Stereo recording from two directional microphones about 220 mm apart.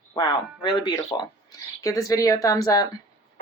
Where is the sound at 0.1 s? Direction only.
20° left (ahead or behind).